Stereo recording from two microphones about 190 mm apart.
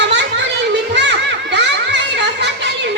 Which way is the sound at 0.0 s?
70° right (ahead or behind).